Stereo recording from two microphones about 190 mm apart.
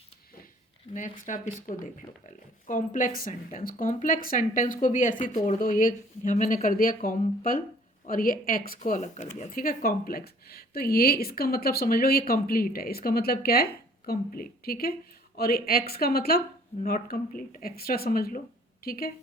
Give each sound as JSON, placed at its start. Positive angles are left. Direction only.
{"t": 0.9, "sound": "speech", "side_deg": 45}